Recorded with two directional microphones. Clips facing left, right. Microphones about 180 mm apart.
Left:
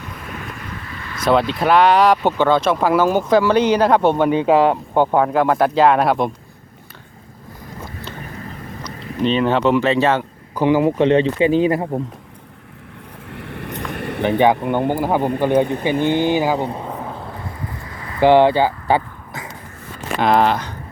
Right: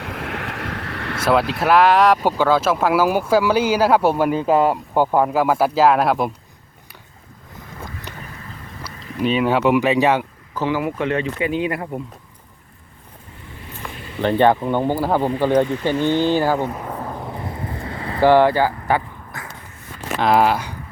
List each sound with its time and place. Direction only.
0.0 s vehicle: 80° right
1.2 s speech: 5° right (ahead or behind)
9.2 s speech: 10° right (ahead or behind)
10.5 s speech: 15° left (ahead or behind); by 11.8 s 30° left (ahead or behind)
13.2 s vehicle: 75° left (ahead or behind)
14.2 s speech: 15° left (ahead or behind)
16.8 s vehicle: 10° left (ahead or behind)
17.1 s a sound: 15° right (ahead or behind)
18.2 s a sound: 20° left (ahead or behind)
20.1 s speech: 5° right (ahead or behind)